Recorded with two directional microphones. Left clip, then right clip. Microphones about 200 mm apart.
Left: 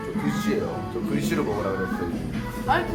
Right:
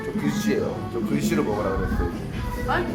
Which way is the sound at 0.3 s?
25° right (ahead or behind).